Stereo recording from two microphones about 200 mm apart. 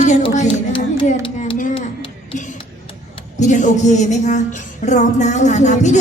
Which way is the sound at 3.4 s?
40° left (ahead or behind).